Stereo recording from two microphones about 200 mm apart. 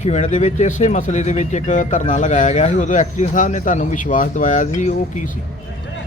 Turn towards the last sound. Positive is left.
turn(degrees=35)  # may be behind; listen again after turning